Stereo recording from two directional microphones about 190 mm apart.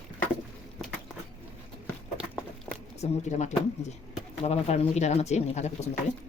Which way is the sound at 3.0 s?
35° left (ahead or behind).